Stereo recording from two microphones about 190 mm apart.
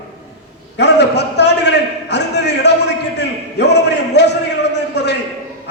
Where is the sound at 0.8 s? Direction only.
65° left (ahead or behind).